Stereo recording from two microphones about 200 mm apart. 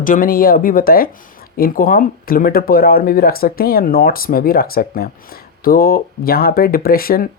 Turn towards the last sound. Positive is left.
turn(degrees=45)  # may be behind; listen again after turning